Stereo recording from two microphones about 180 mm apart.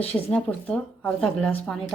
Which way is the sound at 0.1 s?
5° left (ahead or behind).